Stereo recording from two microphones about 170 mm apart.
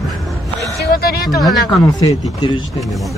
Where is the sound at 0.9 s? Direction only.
65° left (ahead or behind).